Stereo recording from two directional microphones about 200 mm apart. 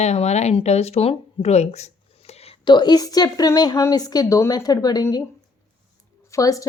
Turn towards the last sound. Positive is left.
turn(degrees=15)  # may be behind; listen again after turning